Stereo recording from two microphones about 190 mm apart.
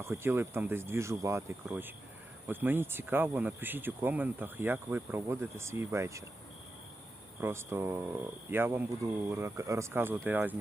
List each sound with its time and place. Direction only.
0.0 s speech: 15° right (ahead or behind)
7.4 s speech: 15° right (ahead or behind)